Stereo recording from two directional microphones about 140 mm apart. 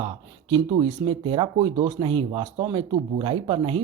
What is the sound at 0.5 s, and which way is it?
Speech, 35° right (ahead or behind).